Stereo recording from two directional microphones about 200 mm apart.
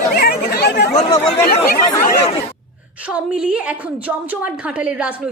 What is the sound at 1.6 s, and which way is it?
Speech, 40° left (ahead or behind).